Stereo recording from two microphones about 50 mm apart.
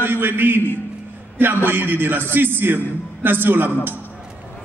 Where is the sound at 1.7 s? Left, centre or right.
Right.